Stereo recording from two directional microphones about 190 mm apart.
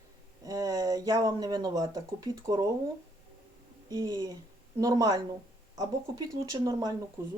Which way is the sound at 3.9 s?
20° right (ahead or behind).